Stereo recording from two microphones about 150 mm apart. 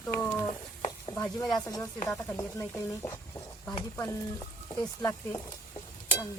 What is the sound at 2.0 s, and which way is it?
Speech, 20° left (ahead or behind).